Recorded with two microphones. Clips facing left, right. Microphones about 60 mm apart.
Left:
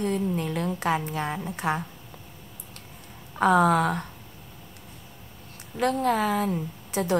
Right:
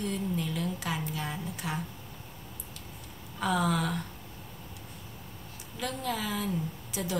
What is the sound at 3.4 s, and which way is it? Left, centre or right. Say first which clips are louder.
Speech: left 9 dB; left.